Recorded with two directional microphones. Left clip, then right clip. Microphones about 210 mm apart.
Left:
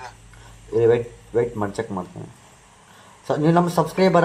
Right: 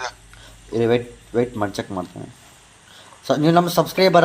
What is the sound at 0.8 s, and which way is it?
Speech, 40° right (ahead or behind).